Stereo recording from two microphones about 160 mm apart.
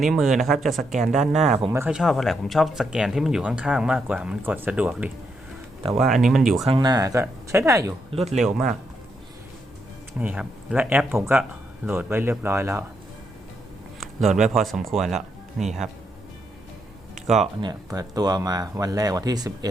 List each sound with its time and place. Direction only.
0.0 s speech: centre (ahead or behind)
6.7 s speech: 25° right (ahead or behind)
8.1 s speech: 40° right (ahead or behind)
8.4 s speech: centre (ahead or behind)
10.2 s speech: 5° right (ahead or behind)
14.0 s speech: centre (ahead or behind)
17.2 s speech: centre (ahead or behind)
17.6 s speech: 25° right (ahead or behind)